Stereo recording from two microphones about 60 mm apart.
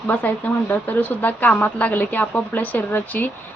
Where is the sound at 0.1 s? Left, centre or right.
Left.